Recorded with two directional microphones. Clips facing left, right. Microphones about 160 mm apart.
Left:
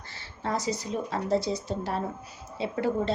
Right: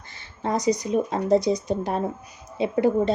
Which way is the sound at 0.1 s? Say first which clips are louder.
Right 5 dB; 20° right (ahead or behind).